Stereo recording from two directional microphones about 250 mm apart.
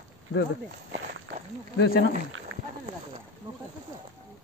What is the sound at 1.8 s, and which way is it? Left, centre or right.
Speech, left.